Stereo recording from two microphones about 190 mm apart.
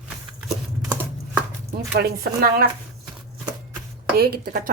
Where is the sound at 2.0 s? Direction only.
55° right (ahead or behind).